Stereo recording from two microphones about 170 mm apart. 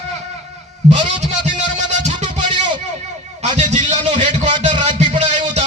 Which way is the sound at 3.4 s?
45° right (ahead or behind).